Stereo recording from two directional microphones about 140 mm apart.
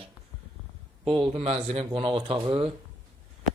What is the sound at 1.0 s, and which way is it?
A man's voice, 40° right (ahead or behind).